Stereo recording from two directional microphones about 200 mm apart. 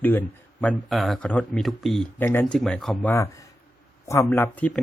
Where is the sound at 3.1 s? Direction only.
15° left (ahead or behind).